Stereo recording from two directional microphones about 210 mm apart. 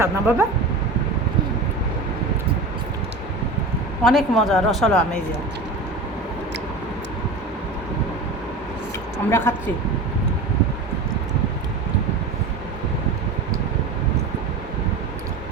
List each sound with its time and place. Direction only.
0.0 s speech: 10° right (ahead or behind)
4.0 s a woman's voice: centre (ahead or behind)
9.3 s speech: 10° left (ahead or behind)